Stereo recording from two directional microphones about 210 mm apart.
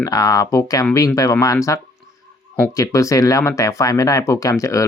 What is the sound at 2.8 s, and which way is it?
Speech, 15° left (ahead or behind).